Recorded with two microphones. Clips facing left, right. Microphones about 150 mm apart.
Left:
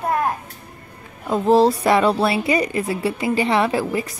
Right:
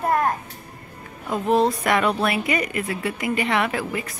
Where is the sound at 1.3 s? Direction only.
30° left (ahead or behind).